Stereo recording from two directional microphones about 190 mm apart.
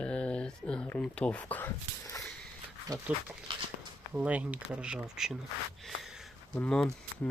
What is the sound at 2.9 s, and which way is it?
Speech, 20° right (ahead or behind).